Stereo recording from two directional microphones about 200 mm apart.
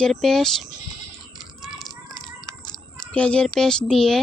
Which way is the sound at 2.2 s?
20° left (ahead or behind).